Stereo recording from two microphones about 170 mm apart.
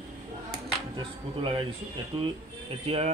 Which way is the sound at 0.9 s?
30° right (ahead or behind).